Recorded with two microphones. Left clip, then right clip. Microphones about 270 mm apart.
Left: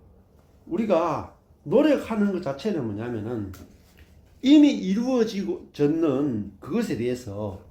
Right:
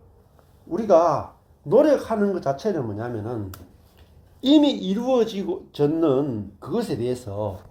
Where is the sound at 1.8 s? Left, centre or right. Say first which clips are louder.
Right 3 dB; centre.